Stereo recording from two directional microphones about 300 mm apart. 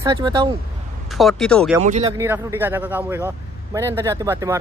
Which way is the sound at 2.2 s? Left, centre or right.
Centre.